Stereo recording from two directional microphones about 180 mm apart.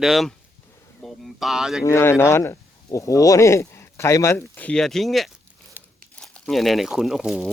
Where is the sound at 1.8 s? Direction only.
15° left (ahead or behind).